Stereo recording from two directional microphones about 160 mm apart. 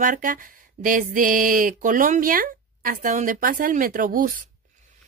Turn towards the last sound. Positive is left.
turn(degrees=-55)  # may be behind; listen again after turning